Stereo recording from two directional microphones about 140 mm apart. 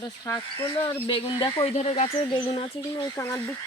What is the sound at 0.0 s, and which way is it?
Speech, 25° left (ahead or behind).